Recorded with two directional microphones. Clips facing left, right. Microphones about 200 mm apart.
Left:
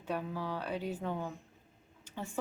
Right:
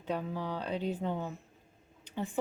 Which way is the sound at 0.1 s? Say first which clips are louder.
Right 2 dB; 15° right (ahead or behind).